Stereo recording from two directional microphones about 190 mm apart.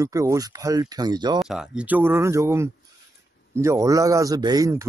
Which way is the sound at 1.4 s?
Centre (ahead or behind).